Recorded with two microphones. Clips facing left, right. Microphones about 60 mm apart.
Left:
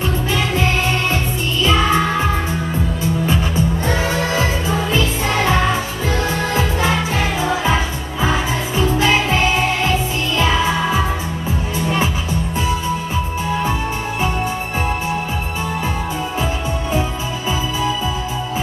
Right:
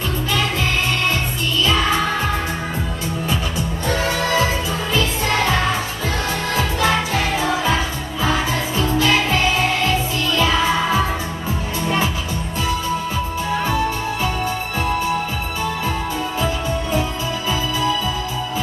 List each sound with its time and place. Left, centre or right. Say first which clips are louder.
3.3 s music: left 3 dB; left
17.5 s music: left 1 dB; left